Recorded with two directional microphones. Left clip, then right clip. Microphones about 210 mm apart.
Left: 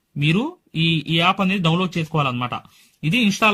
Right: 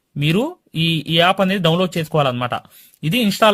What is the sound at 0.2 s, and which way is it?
Speech, 25° right (ahead or behind).